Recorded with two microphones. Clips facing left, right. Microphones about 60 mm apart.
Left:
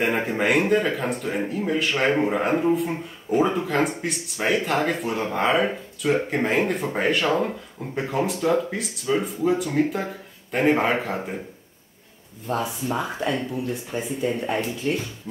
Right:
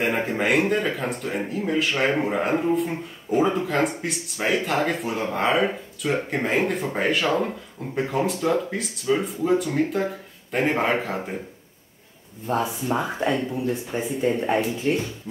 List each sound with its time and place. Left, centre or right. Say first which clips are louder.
0.0 s speech: left 1 dB; centre
12.4 s speech: right 2 dB; centre